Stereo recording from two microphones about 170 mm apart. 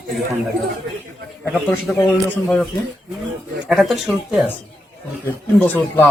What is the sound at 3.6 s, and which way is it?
Speech, centre (ahead or behind).